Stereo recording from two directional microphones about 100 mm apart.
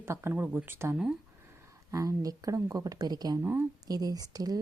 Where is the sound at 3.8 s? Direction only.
40° right (ahead or behind).